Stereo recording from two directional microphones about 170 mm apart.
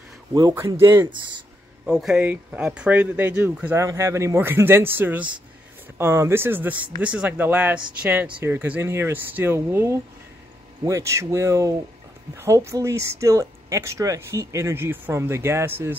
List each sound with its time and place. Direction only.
0.3 s speech: 20° right (ahead or behind)
1.9 s speech: 5° right (ahead or behind)